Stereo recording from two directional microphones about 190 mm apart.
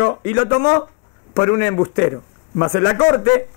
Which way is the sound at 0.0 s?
15° left (ahead or behind).